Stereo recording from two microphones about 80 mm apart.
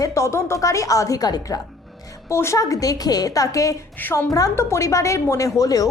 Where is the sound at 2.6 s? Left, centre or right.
Left.